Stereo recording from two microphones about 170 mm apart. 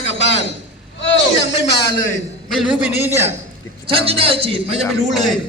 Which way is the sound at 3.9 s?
35° right (ahead or behind).